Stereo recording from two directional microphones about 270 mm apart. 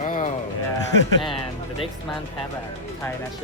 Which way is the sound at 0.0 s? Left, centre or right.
Left.